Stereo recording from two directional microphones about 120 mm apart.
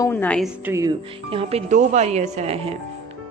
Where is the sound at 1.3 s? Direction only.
50° right (ahead or behind).